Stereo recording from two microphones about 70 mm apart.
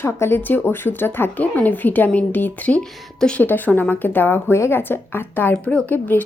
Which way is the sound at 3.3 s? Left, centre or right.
Left.